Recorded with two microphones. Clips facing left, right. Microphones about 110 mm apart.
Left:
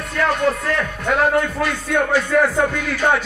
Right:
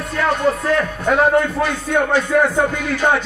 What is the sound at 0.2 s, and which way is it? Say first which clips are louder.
Music: right 1 dB; centre (ahead or behind).